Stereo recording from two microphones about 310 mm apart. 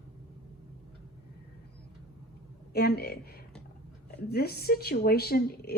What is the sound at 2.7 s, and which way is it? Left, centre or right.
Speech, left.